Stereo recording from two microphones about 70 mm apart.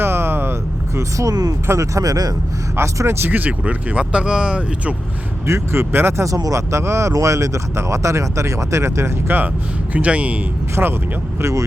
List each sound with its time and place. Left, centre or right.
0.0 s vehicle: right
0.9 s speech: right
1.6 s speech: right
2.7 s speech: right
3.2 s speech: right
5.5 s speech: right
6.2 s speech: right
9.9 s speech: centre
10.8 s speech: right
11.3 s speech: right